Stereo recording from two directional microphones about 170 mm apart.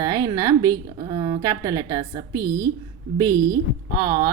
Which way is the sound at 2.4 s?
70° right (ahead or behind).